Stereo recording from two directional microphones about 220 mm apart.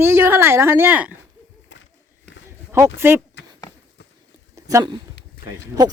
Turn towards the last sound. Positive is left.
turn(degrees=-20)  # may be behind; listen again after turning